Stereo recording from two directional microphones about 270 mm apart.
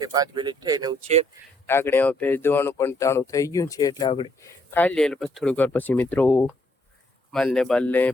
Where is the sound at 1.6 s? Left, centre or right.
Centre.